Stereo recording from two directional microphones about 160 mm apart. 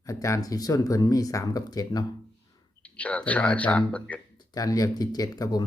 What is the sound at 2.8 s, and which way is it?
Speech, 10° left (ahead or behind).